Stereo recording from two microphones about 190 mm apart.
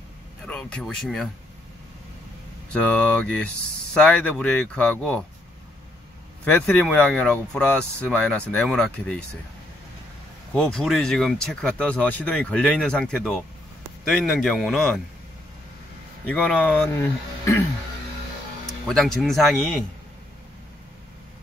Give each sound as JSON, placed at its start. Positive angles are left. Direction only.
{"t": 0.5, "sound": "speech", "side_deg": 5}
{"t": 2.7, "sound": "speech", "side_deg": 5}
{"t": 6.4, "sound": "speech", "side_deg": 10}
{"t": 10.5, "sound": "speech", "side_deg": 5}
{"t": 16.3, "sound": "speech", "side_deg": 5}
{"t": 18.9, "sound": "speech", "side_deg": 0}